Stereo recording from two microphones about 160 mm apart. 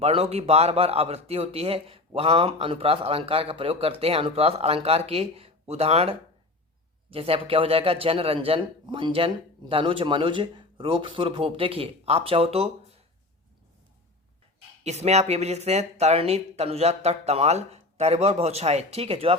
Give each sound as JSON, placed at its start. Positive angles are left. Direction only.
{"t": 0.0, "sound": "a man's voice", "side_deg": -40}
{"t": 14.8, "sound": "a man's voice", "side_deg": -45}